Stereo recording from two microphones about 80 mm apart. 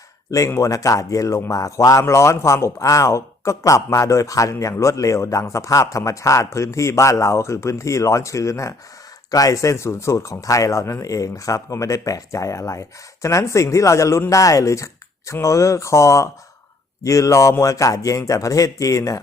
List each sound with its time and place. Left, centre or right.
0.3 s speech: left